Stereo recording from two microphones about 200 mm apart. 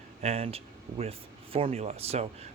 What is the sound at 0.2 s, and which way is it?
Speech, 30° right (ahead or behind).